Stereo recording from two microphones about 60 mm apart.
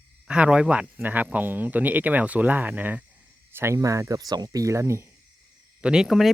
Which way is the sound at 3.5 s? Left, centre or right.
Right.